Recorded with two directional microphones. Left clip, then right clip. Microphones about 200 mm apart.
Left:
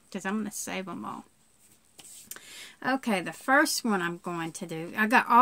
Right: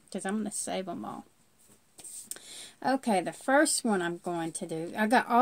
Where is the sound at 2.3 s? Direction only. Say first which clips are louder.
Left 3 dB; 20° left (ahead or behind).